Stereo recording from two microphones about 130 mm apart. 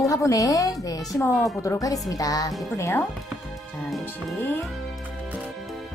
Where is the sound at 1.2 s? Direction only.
15° left (ahead or behind).